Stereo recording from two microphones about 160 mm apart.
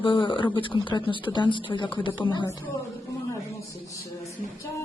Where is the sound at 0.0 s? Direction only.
30° left (ahead or behind).